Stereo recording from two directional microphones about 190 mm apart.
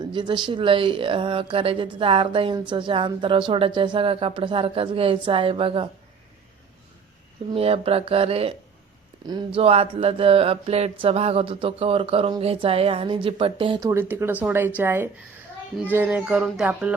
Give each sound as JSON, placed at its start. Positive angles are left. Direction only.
{"t": 0.0, "sound": "mantra", "side_deg": -25}
{"t": 7.5, "sound": "speech", "side_deg": -30}
{"t": 9.6, "sound": "mantra", "side_deg": -30}
{"t": 13.8, "sound": "a sound", "side_deg": -10}